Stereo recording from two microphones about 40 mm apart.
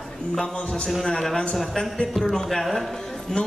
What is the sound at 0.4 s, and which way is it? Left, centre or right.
Speech, centre.